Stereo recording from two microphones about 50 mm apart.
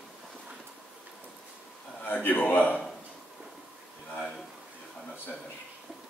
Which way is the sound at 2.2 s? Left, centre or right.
Left.